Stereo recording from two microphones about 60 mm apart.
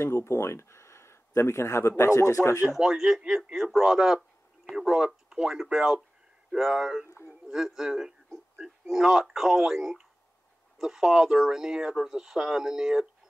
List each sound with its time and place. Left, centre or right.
0.0 s speech: left
2.7 s a man's voice: centre